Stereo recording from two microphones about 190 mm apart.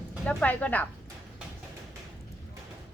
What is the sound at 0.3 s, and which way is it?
Speech, 10° left (ahead or behind).